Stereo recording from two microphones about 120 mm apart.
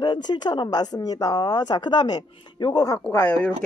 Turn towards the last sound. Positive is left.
turn(degrees=15)  # may be behind; listen again after turning